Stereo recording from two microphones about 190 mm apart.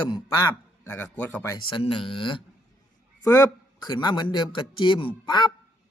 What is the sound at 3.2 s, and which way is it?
A man's voice, 15° left (ahead or behind).